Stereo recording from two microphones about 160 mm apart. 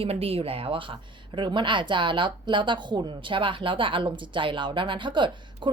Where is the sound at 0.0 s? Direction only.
40° right (ahead or behind).